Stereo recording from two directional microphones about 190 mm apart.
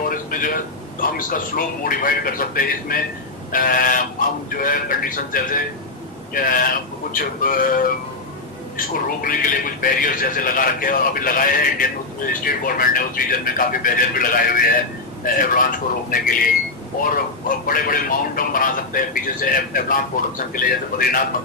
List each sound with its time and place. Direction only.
0.1 s a man's voice: 45° left (ahead or behind)
17.7 s a man's voice: 45° left (ahead or behind)